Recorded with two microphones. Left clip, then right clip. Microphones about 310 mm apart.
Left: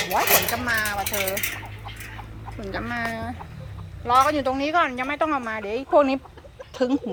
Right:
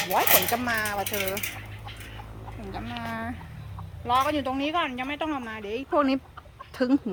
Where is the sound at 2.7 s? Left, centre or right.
Centre.